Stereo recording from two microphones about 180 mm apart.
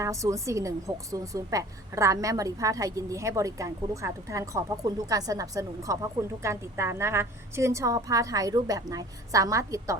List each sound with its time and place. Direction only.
0.0 s a woman's voice: 15° right (ahead or behind)